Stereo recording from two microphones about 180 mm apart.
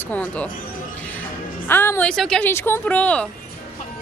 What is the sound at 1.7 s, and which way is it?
Speech, 10° left (ahead or behind).